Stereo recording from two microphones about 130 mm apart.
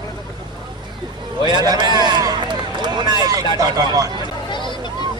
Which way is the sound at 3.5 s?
30° right (ahead or behind).